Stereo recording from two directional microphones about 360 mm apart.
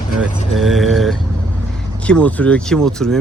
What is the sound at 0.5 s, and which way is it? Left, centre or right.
Speech, centre.